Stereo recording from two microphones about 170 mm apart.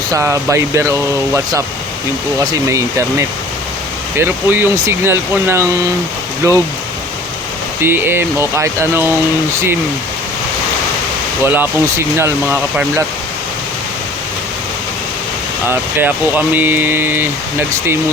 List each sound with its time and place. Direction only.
0.1 s speech: 15° right (ahead or behind)
2.4 s speech: 20° right (ahead or behind)
7.8 s speech: 15° right (ahead or behind)
11.4 s speech: 10° right (ahead or behind)
15.7 s speech: 10° right (ahead or behind)